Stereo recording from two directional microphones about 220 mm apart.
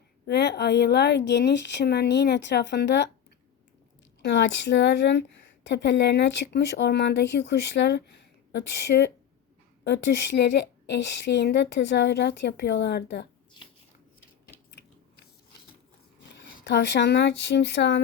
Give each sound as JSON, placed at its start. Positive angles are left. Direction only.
{"t": 0.3, "sound": "a woman's voice", "side_deg": 50}
{"t": 4.2, "sound": "a woman's voice", "side_deg": 55}
{"t": 16.6, "sound": "a woman's voice", "side_deg": 50}